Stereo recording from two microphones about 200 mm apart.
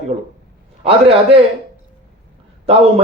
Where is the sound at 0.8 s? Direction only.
30° right (ahead or behind).